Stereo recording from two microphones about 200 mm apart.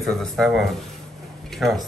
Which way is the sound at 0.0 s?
Centre (ahead or behind).